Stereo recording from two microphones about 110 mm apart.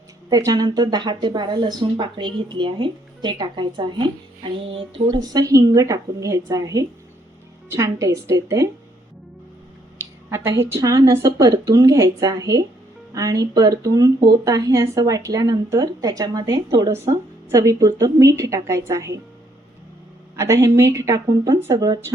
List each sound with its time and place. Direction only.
0.3 s a woman's voice: 35° right (ahead or behind)
10.2 s a woman's voice: 25° right (ahead or behind)
20.3 s a woman's voice: 30° right (ahead or behind)